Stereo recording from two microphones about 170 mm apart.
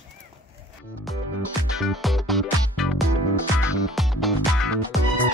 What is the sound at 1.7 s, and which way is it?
Music, centre (ahead or behind).